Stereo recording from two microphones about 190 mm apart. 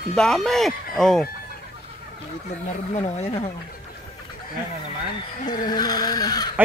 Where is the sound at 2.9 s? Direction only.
35° left (ahead or behind).